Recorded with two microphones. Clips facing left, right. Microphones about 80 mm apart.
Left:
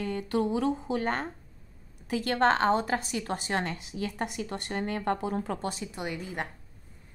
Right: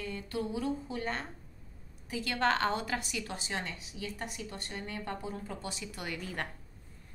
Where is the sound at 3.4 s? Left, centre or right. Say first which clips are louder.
Left 7 dB; left.